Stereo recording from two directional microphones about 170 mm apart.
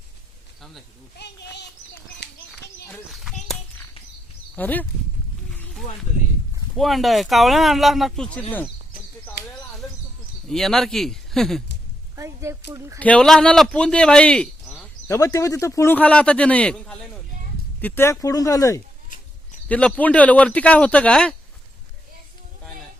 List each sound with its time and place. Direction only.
0.6 s speech: centre (ahead or behind)
2.2 s children playing: 80° left
2.9 s speech: centre (ahead or behind)
4.5 s speech: 10° left (ahead or behind)
5.5 s a sound: 5° left (ahead or behind)
6.7 s speech: centre (ahead or behind)
9.4 s a sound: 75° left (ahead or behind)
10.5 s speech: 5° left (ahead or behind)
12.1 s a sound: 15° right (ahead or behind)
13.0 s speech: 5° left (ahead or behind)
15.0 s speech: 15° left (ahead or behind)
19.0 s a sound: 50° left (ahead or behind)
19.6 s speech: 10° left (ahead or behind)